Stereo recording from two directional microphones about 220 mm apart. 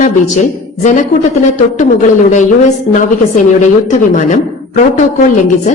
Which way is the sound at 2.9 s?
35° left (ahead or behind).